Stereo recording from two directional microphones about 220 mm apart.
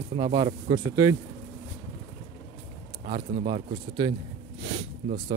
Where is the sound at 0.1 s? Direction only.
20° right (ahead or behind).